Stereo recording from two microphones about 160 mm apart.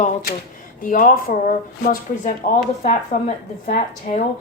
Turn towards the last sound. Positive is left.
turn(degrees=45)  # may be behind; listen again after turning